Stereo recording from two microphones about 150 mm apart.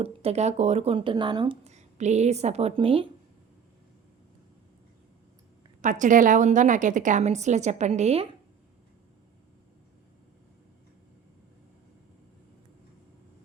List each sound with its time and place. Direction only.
0.0 s speech: 40° right (ahead or behind)
1.6 s speech: 50° right (ahead or behind)
5.8 s a woman's voice: 60° right (ahead or behind)